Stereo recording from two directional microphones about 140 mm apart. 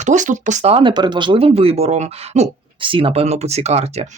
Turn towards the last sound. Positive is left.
turn(degrees=-50)  # may be behind; listen again after turning